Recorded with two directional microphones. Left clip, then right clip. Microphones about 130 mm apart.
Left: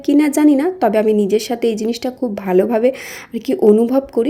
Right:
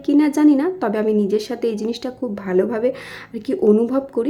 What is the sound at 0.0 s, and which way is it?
Speech, 15° left (ahead or behind).